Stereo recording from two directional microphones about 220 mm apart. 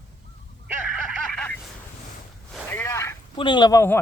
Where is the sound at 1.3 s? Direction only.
5° left (ahead or behind).